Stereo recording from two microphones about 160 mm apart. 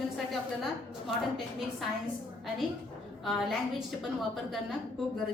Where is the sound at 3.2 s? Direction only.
Centre (ahead or behind).